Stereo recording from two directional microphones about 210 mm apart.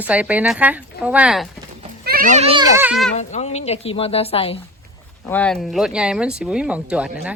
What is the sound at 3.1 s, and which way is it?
Speech, 35° left (ahead or behind).